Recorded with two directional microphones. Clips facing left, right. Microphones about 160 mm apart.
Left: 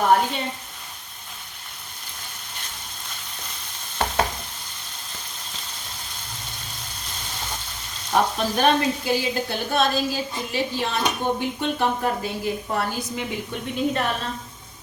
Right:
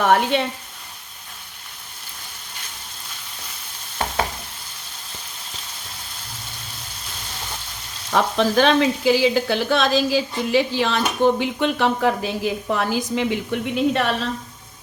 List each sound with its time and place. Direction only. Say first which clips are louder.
0.0 s frying: right 2 dB; 80° right
8.1 s a woman's voice: right 4 dB; 90° right